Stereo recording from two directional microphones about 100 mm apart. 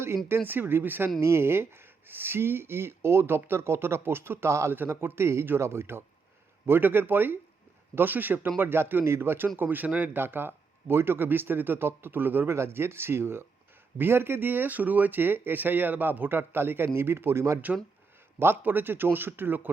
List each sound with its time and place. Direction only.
0.3 s speech: 20° right (ahead or behind)